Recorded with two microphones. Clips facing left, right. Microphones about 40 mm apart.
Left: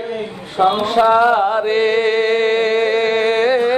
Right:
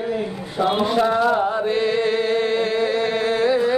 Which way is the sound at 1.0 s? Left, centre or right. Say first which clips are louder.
Left 8 dB; left.